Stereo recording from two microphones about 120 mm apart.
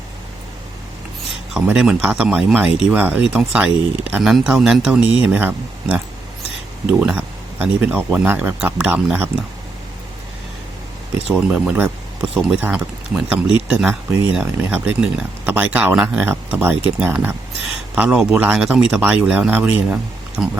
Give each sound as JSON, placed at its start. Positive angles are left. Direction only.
{"t": 1.5, "sound": "speech", "side_deg": -5}
{"t": 11.3, "sound": "speech", "side_deg": -5}